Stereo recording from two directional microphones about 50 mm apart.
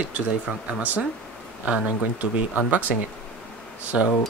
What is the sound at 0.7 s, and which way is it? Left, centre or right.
Speech, right.